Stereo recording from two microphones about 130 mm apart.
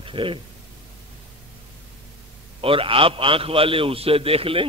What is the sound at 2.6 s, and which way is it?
A man's voice, 45° right (ahead or behind).